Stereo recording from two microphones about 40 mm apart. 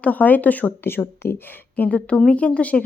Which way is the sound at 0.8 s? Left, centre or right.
Left.